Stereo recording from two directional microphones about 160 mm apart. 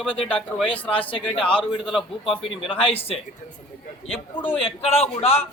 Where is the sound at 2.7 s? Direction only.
35° left (ahead or behind).